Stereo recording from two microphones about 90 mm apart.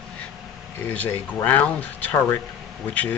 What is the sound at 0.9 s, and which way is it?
Speech, 15° left (ahead or behind).